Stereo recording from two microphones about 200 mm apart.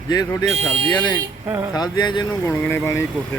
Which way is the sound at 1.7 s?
20° left (ahead or behind).